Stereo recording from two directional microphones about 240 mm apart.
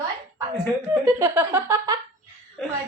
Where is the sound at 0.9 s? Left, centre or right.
Centre.